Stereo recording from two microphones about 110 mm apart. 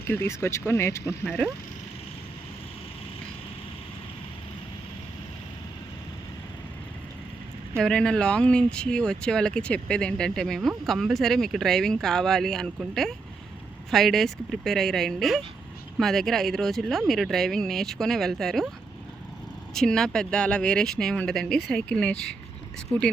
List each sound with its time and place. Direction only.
0.1 s speech: 25° left (ahead or behind)
7.8 s speech: 5° left (ahead or behind)
19.7 s speech: 5° left (ahead or behind)